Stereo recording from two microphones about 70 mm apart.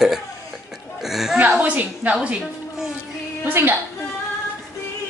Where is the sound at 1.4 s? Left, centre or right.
Centre.